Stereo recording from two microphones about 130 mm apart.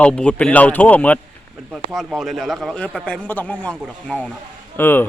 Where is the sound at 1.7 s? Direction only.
Centre (ahead or behind).